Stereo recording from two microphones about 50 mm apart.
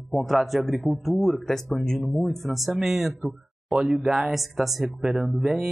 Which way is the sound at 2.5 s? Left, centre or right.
Centre.